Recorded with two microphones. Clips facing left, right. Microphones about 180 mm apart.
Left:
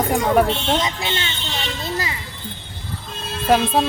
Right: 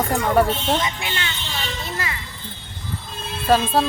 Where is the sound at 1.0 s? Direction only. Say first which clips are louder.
Left 3 dB; 25° left (ahead or behind).